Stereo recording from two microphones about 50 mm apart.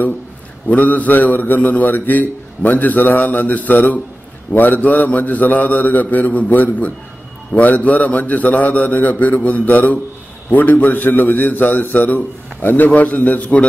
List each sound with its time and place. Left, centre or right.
0.7 s a man's voice: left